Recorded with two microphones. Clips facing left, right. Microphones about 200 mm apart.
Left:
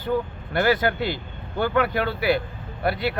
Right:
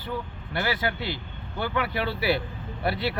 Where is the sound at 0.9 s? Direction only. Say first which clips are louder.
Left 6 dB; 20° left (ahead or behind).